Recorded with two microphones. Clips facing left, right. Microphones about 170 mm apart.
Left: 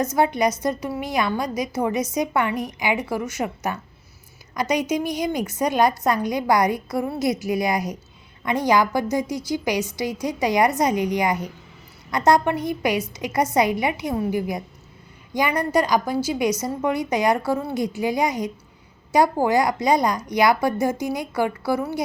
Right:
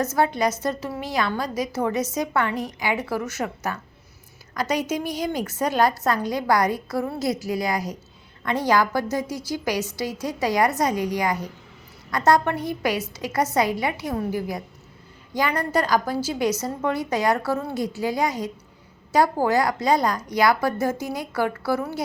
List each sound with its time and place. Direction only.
0.0 s a woman's voice: 15° left (ahead or behind)